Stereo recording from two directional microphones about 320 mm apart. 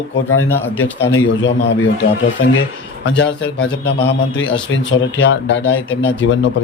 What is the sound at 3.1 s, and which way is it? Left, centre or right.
A man's voice, left.